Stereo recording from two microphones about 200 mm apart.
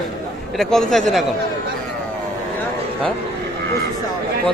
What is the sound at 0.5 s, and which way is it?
Speech, centre (ahead or behind).